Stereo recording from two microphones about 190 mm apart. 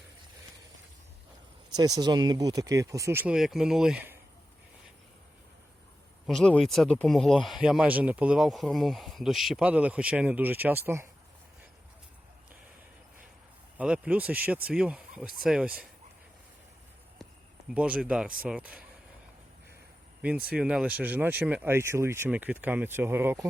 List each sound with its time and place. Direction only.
1.7 s speech: 20° right (ahead or behind)
6.2 s speech: 5° left (ahead or behind); by 11.1 s 15° right (ahead or behind)
13.7 s speech: 5° right (ahead or behind)
17.7 s speech: 5° right (ahead or behind)
20.6 s speech: 5° right (ahead or behind)